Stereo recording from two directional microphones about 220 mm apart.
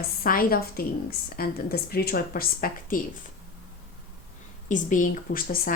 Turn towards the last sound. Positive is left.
turn(degrees=40)  # may be behind; listen again after turning